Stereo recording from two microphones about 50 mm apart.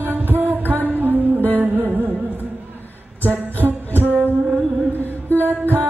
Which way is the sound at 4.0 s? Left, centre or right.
Right.